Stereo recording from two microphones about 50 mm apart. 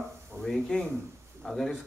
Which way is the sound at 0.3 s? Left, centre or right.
Centre.